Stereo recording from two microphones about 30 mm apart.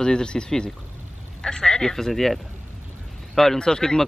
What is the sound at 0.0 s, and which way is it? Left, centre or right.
Speech, left.